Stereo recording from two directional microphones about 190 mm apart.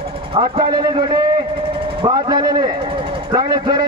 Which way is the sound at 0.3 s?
25° right (ahead or behind).